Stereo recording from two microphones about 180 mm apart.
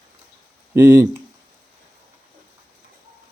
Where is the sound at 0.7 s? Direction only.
20° right (ahead or behind).